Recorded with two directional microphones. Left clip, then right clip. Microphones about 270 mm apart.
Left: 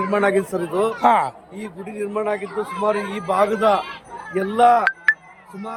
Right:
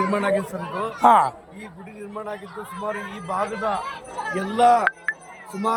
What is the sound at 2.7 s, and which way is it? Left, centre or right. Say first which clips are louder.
Speech: left 7 dB; left.